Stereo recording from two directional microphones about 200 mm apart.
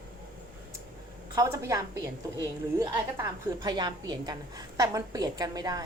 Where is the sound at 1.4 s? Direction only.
15° right (ahead or behind).